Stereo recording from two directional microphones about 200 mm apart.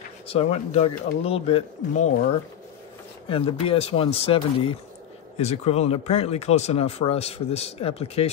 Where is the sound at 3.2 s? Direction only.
25° left (ahead or behind).